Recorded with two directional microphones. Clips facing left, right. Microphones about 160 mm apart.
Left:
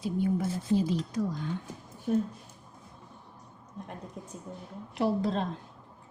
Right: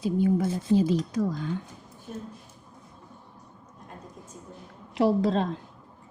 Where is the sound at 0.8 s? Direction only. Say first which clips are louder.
Right 5 dB; 90° right.